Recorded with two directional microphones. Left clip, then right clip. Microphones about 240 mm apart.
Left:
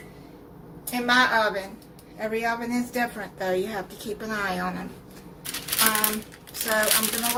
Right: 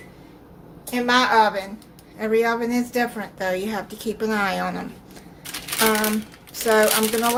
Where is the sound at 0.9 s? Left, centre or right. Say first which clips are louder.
Right 2 dB; right.